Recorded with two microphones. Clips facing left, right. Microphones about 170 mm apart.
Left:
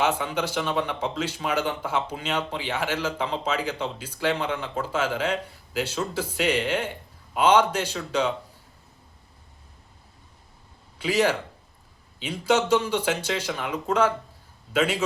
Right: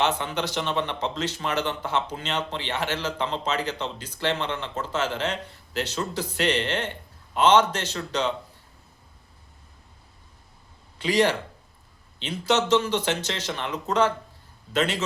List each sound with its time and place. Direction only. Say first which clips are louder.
0.0 s speech: left 1 dB; 10° left (ahead or behind)
10.9 s speech: right 1 dB; 5° left (ahead or behind)